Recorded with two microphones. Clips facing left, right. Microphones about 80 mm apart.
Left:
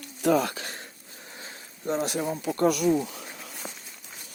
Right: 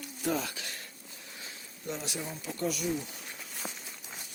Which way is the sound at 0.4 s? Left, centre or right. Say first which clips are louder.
Left 7 dB; left.